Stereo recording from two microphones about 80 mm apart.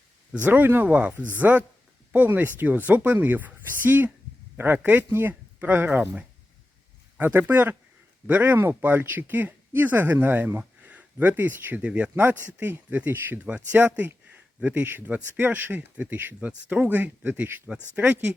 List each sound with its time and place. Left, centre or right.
0.4 s speech: right
7.2 s speech: right
11.9 s speech: centre
12.1 s speech: right